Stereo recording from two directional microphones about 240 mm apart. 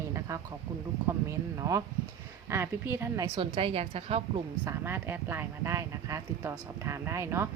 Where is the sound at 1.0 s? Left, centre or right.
Centre.